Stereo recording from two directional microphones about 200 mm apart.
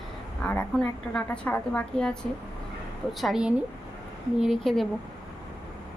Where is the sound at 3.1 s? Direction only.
Centre (ahead or behind).